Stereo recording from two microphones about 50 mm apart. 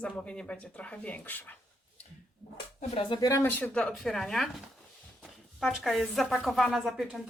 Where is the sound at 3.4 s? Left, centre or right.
Left.